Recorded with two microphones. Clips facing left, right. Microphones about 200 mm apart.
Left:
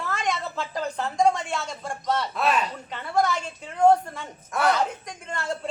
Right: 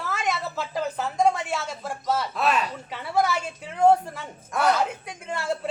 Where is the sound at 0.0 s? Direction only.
5° right (ahead or behind).